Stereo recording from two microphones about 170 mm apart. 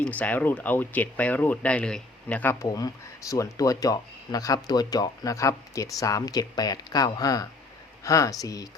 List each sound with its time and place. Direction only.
0.0 s speech: 10° left (ahead or behind)